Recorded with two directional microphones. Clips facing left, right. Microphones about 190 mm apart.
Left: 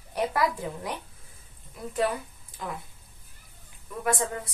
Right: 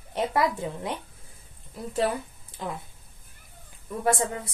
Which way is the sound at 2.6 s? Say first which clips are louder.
Right 2 dB; 25° right (ahead or behind).